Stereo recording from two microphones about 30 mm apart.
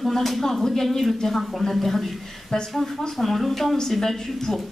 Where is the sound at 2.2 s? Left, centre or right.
Centre.